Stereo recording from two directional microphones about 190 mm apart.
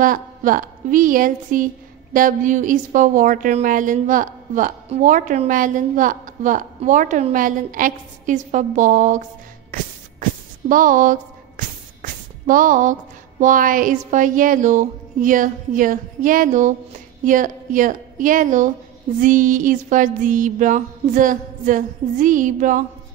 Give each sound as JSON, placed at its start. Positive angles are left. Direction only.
{"t": 0.0, "sound": "speech", "side_deg": -45}
{"t": 9.7, "sound": "a sound", "side_deg": -45}
{"t": 13.4, "sound": "a woman's voice", "side_deg": -45}